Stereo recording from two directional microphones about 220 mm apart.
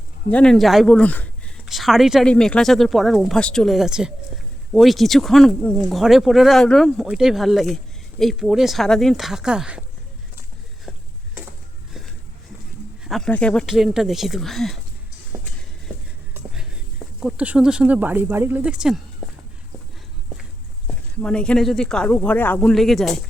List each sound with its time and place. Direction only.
0.3 s speech: 5° left (ahead or behind)
13.1 s speech: centre (ahead or behind)
15.3 s a sound: 15° right (ahead or behind)
17.2 s speech: 5° right (ahead or behind)
21.2 s speech: 5° left (ahead or behind)